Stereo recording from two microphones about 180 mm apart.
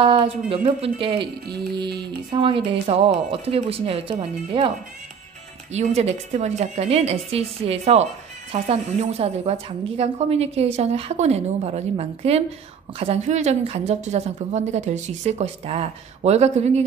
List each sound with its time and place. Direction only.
0.0 s a woman's voice: 30° right (ahead or behind)
5.7 s a woman's voice: 40° right (ahead or behind)